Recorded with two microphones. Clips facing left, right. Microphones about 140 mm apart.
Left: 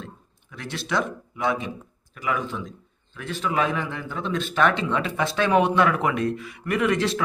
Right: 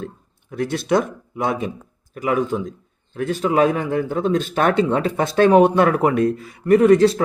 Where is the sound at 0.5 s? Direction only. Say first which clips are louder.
Right 8 dB; 50° right (ahead or behind).